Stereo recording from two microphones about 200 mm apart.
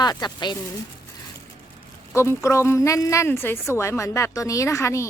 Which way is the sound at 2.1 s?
15° left (ahead or behind).